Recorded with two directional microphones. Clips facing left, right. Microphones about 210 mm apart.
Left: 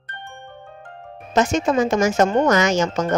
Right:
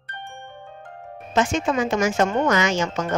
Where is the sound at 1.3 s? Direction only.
40° left (ahead or behind).